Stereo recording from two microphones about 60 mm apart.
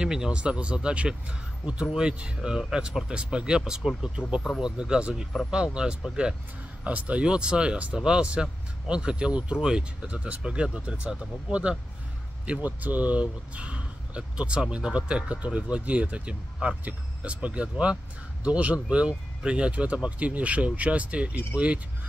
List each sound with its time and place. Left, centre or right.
0.0 s speech: centre